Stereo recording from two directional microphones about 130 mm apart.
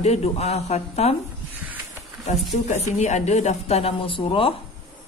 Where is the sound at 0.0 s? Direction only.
55° left (ahead or behind).